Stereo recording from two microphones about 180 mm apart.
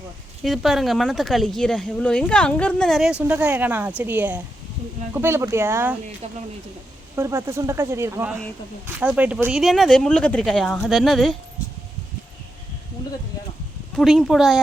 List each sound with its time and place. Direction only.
0.4 s speech: centre (ahead or behind)
6.2 s speech: 35° right (ahead or behind)
7.2 s speech: 15° right (ahead or behind); by 11.3 s centre (ahead or behind)
13.9 s speech: centre (ahead or behind)